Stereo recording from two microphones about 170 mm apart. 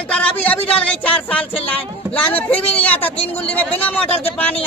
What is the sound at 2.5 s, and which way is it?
Speech, 10° left (ahead or behind).